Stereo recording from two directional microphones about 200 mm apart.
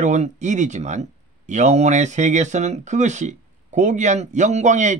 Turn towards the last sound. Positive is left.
turn(degrees=-35)  # may be behind; listen again after turning